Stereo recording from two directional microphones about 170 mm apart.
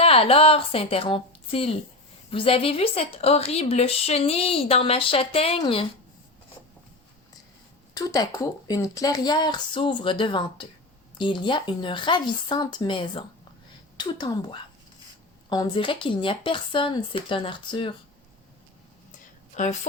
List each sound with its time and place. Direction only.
0.0 s a woman's voice: 35° left (ahead or behind)
7.9 s speech: 20° left (ahead or behind)
19.6 s a woman's voice: 45° left (ahead or behind)